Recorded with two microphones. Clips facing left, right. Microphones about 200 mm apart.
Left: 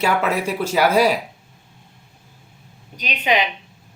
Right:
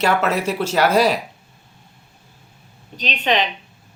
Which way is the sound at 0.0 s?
10° left (ahead or behind).